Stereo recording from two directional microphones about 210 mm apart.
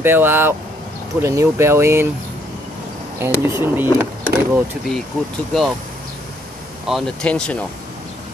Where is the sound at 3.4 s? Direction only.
10° right (ahead or behind).